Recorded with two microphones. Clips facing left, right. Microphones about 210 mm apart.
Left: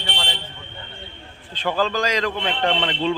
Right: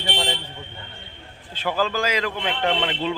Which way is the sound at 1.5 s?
10° right (ahead or behind).